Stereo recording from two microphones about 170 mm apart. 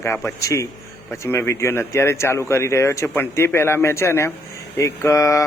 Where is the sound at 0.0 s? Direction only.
15° left (ahead or behind).